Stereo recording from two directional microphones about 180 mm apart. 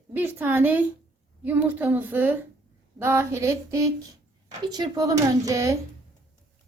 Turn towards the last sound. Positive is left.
turn(degrees=-20)  # may be behind; listen again after turning